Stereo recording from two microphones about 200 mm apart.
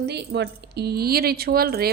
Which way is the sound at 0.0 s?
55° right (ahead or behind).